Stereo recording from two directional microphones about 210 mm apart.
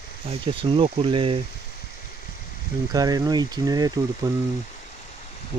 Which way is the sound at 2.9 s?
20° right (ahead or behind).